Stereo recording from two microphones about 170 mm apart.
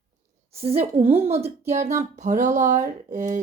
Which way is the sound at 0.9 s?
35° right (ahead or behind).